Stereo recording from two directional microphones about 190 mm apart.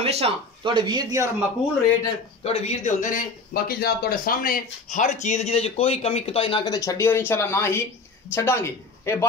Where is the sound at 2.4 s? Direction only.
35° left (ahead or behind).